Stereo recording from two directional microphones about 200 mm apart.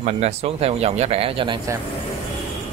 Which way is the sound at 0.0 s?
30° right (ahead or behind).